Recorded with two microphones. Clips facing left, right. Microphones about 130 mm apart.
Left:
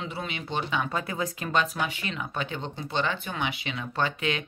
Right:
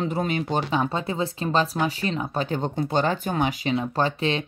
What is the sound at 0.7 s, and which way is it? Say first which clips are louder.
Speech: right 5 dB; 30° right (ahead or behind).